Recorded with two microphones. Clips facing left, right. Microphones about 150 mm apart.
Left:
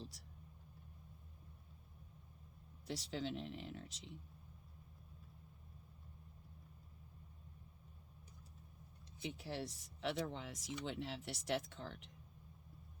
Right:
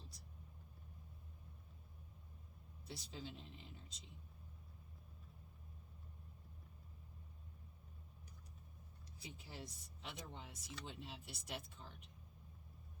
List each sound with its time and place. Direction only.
2.8 s speech: 90° left
9.4 s speech: 85° left